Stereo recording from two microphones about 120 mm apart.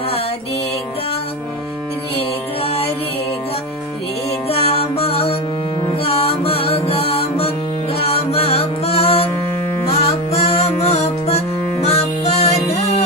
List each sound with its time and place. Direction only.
2.6 s music: 55° left (ahead or behind)
4.4 s music: 55° left (ahead or behind)